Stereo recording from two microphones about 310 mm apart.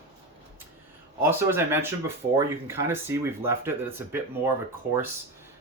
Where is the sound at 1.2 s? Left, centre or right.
Centre.